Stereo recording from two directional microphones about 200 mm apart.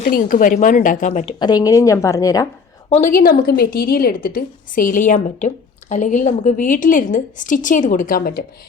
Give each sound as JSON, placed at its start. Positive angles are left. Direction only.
{"t": 0.0, "sound": "speech", "side_deg": 45}
{"t": 2.9, "sound": "a woman's voice", "side_deg": 40}